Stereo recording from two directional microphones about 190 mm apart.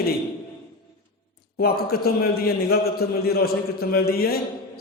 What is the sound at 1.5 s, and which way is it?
A man's voice, 55° left (ahead or behind).